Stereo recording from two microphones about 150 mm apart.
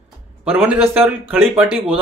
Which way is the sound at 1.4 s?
5° right (ahead or behind).